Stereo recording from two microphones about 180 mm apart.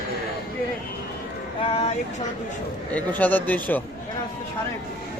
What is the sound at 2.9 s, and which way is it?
Speech, 10° left (ahead or behind).